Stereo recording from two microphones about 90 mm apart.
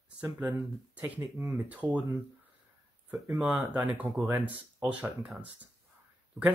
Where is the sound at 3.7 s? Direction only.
20° right (ahead or behind).